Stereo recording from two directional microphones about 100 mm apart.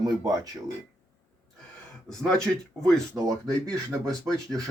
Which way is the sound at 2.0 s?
5° left (ahead or behind).